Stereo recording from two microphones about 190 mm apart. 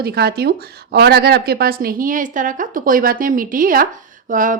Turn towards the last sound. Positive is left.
turn(degrees=-45)  # may be behind; listen again after turning